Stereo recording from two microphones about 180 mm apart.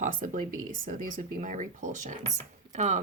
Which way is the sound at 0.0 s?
45° right (ahead or behind).